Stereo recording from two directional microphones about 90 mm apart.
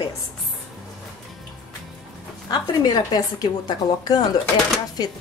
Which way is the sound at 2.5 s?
45° left (ahead or behind).